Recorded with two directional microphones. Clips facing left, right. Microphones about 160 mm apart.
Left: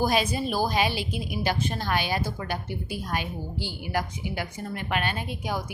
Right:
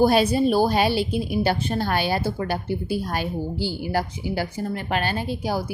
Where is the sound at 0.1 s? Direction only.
35° right (ahead or behind).